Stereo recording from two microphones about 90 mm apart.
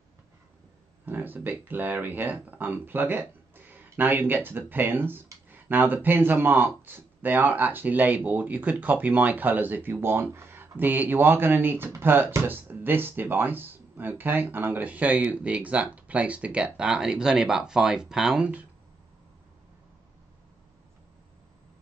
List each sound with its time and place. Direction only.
1.0 s speech: 20° right (ahead or behind); by 18.5 s 5° right (ahead or behind)